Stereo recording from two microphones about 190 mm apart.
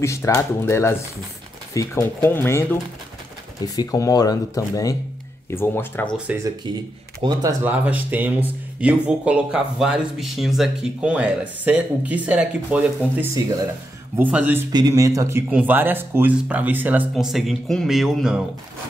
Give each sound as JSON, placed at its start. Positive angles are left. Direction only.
{"t": 0.0, "sound": "speech", "side_deg": 15}
{"t": 6.1, "sound": "speech", "side_deg": -10}
{"t": 7.6, "sound": "speech", "side_deg": -10}
{"t": 14.7, "sound": "speech", "side_deg": -20}